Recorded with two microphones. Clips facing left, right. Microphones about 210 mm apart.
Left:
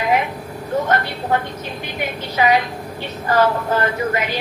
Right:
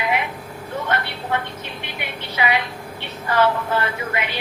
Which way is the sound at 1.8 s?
40° left (ahead or behind).